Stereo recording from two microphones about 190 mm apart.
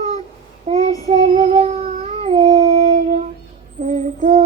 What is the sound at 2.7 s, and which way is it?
Howl, 45° right (ahead or behind).